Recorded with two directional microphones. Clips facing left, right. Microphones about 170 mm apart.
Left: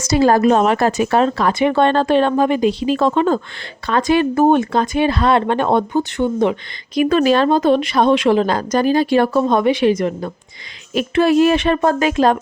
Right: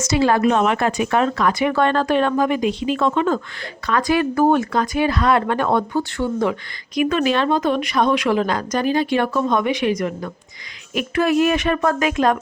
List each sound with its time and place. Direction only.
0.0 s speech: 40° left (ahead or behind); by 7.0 s 20° left (ahead or behind)
7.0 s speech: 35° left (ahead or behind)